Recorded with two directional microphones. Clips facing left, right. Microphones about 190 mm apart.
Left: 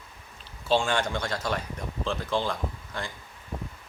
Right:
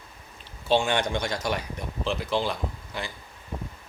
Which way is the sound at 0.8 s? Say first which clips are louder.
Right 2 dB; 20° right (ahead or behind).